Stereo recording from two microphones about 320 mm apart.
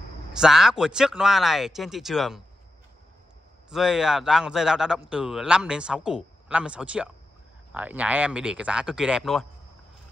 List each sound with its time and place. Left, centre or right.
0.4 s a man's voice: centre
3.7 s a man's voice: centre